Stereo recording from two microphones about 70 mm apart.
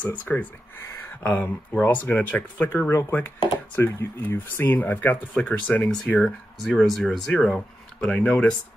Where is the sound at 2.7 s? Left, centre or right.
Left.